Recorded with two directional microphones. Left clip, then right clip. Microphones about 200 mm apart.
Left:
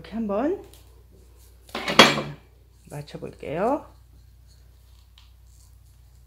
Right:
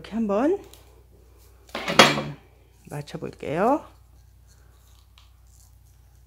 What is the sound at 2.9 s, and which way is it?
Speech, 45° right (ahead or behind).